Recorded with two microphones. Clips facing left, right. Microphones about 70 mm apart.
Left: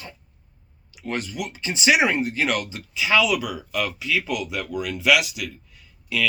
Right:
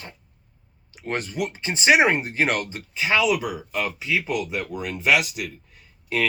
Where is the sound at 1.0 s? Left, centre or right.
Right.